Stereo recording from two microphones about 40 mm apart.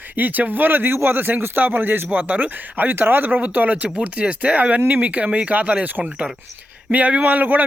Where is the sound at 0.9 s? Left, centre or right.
Right.